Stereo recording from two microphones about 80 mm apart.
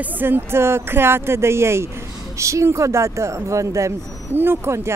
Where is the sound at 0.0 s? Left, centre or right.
Right.